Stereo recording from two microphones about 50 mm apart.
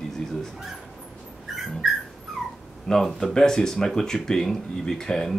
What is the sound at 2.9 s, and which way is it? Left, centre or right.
Speech, centre.